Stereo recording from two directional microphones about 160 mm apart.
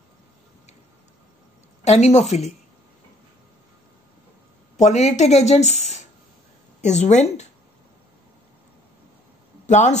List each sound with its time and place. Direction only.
1.9 s speech: 45° left (ahead or behind)
4.7 s speech: 45° left (ahead or behind)
9.7 s speech: 50° left (ahead or behind)